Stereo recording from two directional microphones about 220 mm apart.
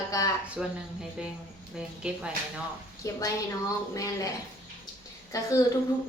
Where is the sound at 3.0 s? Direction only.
15° left (ahead or behind).